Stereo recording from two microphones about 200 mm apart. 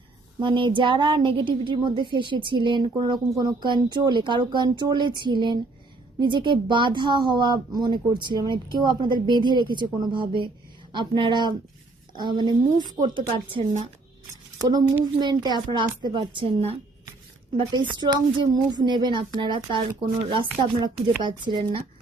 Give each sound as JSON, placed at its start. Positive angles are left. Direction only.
{"t": 0.3, "sound": "speech", "side_deg": -25}
{"t": 14.6, "sound": "speech", "side_deg": -20}
{"t": 21.2, "sound": "speech", "side_deg": -25}